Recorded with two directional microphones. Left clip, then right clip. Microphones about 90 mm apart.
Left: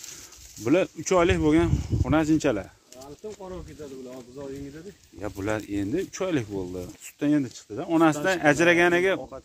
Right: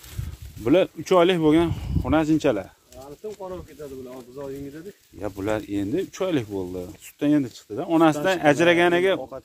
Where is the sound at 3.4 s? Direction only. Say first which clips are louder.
Right 4 dB; 90° right.